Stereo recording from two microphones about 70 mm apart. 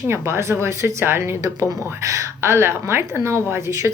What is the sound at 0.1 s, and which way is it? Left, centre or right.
Speech, right.